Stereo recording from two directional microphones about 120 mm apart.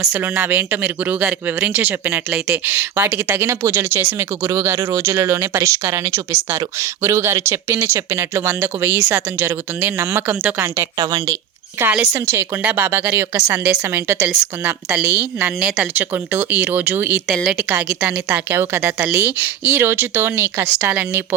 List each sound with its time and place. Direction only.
0.1 s speech: 15° right (ahead or behind); by 11.3 s 30° right (ahead or behind)
11.8 s speech: 15° right (ahead or behind)
17.2 s speech: centre (ahead or behind); by 21.2 s 20° right (ahead or behind)